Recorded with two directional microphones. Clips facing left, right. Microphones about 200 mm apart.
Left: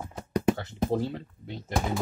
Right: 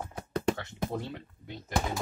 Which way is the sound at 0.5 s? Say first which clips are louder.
Left 6 dB; 30° left (ahead or behind).